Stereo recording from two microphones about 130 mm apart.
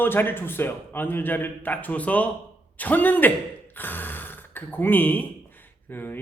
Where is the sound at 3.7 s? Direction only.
15° left (ahead or behind).